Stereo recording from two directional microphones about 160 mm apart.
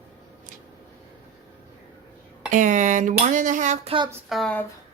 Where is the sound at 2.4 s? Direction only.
50° right (ahead or behind).